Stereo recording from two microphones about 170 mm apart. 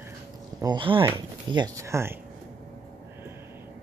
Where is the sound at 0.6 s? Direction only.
25° right (ahead or behind).